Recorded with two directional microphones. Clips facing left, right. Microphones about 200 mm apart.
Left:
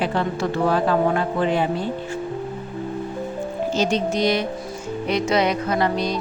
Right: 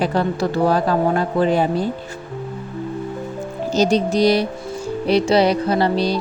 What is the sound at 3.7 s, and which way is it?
A woman's voice, 35° right (ahead or behind).